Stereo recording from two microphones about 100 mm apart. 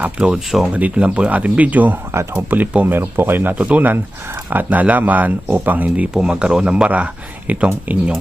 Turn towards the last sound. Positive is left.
turn(degrees=-15)  # may be behind; listen again after turning